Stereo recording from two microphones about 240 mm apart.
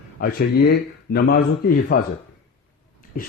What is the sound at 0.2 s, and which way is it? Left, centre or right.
Speech, left.